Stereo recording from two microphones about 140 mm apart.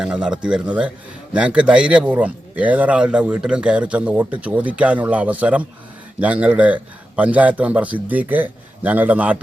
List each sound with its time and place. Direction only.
0.0 s a man's voice: 5° right (ahead or behind)